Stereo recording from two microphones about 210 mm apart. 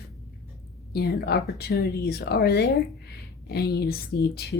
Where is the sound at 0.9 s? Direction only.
50° left (ahead or behind).